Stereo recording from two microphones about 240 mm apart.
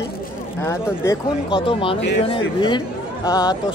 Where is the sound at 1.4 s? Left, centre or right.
Left.